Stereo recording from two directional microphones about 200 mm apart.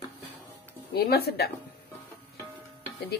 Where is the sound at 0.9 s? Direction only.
50° left (ahead or behind).